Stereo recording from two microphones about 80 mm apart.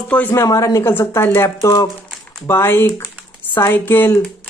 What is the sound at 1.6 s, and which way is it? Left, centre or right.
Speech, left.